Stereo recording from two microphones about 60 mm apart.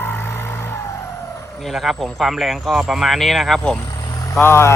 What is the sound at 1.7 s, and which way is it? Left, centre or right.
Speech, centre.